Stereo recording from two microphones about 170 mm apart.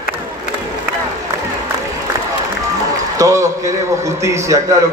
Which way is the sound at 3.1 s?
20° right (ahead or behind).